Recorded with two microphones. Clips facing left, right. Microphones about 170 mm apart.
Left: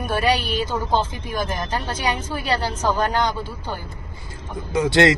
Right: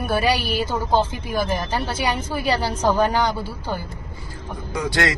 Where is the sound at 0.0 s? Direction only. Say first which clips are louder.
Even; 10° right (ahead or behind).